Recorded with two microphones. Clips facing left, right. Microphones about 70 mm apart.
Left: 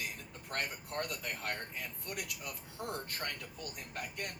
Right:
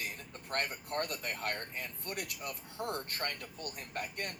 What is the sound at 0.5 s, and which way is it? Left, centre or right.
Speech, right.